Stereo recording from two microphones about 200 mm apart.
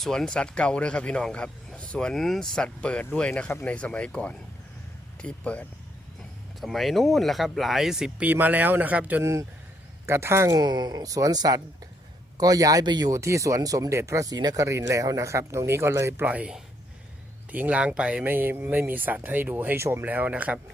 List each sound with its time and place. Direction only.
0.0 s speech: centre (ahead or behind)